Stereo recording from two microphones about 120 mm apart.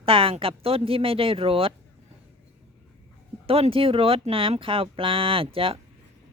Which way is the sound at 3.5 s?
50° right (ahead or behind).